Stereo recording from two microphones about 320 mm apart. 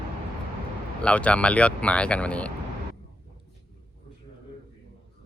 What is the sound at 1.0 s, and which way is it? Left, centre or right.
Speech, centre.